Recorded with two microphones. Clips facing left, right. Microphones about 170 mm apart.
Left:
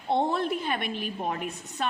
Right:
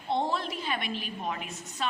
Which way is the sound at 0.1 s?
55° left (ahead or behind).